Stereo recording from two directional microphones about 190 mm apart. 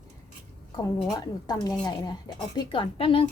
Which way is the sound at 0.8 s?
20° left (ahead or behind).